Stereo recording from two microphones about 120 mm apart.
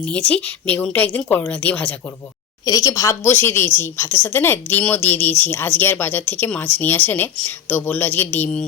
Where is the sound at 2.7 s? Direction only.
30° left (ahead or behind).